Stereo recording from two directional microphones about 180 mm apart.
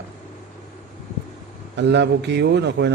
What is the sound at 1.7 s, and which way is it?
A man's voice, 75° right (ahead or behind).